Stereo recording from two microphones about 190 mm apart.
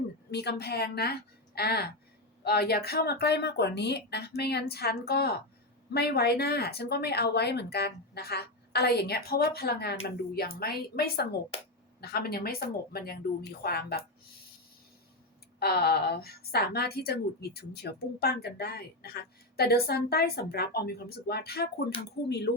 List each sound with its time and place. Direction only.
0.3 s a woman's voice: 60° left (ahead or behind)
15.5 s a woman's voice: 55° left (ahead or behind)